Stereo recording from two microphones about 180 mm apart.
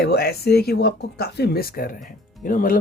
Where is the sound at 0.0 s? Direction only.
60° left (ahead or behind).